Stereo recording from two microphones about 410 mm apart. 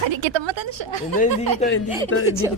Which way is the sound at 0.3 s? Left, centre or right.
Right.